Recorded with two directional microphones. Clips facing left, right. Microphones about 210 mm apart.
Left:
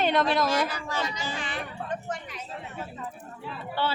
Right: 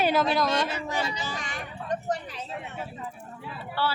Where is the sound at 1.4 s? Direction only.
40° right (ahead or behind).